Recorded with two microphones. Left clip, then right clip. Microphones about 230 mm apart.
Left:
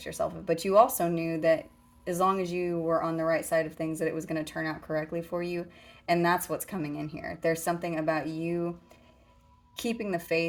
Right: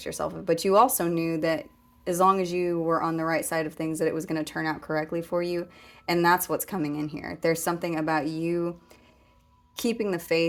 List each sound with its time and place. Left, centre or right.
0.0 s speech: right
9.7 s speech: right